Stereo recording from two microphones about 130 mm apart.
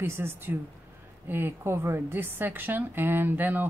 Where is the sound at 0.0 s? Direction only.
20° right (ahead or behind).